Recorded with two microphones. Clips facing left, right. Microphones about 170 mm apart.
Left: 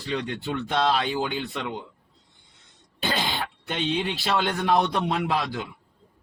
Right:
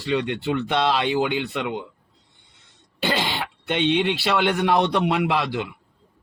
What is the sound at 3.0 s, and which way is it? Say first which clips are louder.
A man's voice: right 3 dB; 70° right (ahead or behind).